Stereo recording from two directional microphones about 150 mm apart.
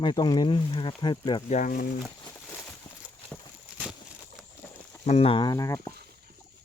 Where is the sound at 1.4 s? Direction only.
55° left (ahead or behind).